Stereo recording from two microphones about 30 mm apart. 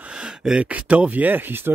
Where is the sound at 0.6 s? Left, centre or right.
Right.